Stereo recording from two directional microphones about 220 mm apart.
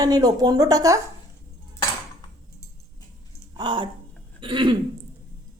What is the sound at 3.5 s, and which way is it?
Speech, 20° right (ahead or behind).